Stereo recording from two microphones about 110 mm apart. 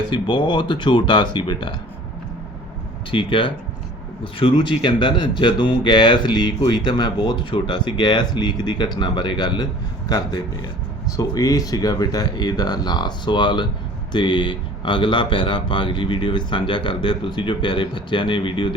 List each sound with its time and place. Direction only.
0.1 s speech: 50° left (ahead or behind)
3.1 s speech: 50° left (ahead or behind)